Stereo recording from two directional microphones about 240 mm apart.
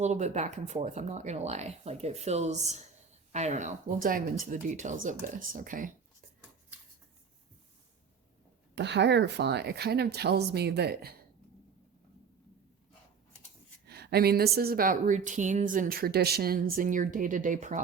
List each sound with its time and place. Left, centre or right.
0.0 s speech: right
8.7 s speech: right
13.8 s speech: right